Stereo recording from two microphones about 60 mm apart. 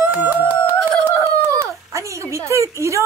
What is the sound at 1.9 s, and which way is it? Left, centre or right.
A woman's voice, right.